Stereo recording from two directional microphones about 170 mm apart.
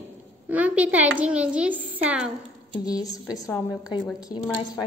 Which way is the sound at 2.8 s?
20° left (ahead or behind).